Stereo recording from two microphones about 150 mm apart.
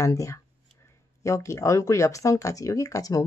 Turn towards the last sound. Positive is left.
turn(degrees=20)  # may be behind; listen again after turning